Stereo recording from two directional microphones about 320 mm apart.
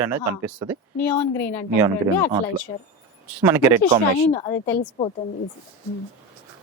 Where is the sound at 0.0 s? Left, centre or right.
Centre.